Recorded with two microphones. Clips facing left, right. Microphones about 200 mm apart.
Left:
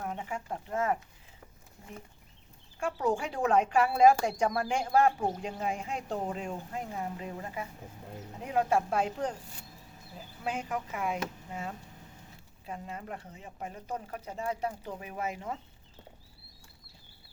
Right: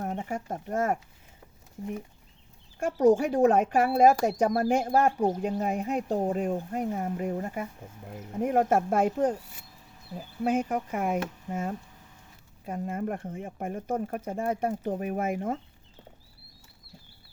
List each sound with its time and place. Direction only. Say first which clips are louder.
0.0 s speech: right 5 dB; 45° right (ahead or behind)
2.8 s speech: right 9 dB; 40° right (ahead or behind)
3.7 s speech: right 2 dB; 55° right (ahead or behind)